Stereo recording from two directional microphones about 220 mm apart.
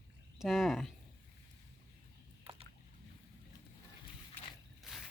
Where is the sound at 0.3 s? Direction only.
Centre (ahead or behind).